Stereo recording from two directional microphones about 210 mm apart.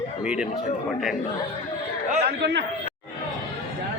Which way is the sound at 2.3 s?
55° right (ahead or behind).